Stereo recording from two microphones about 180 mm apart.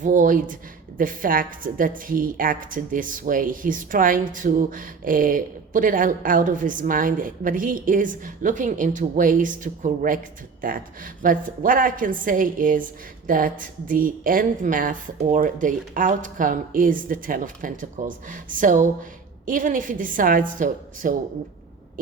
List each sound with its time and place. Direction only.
0.0 s a woman's voice: 45° right (ahead or behind)
22.0 s hoot: 50° right (ahead or behind)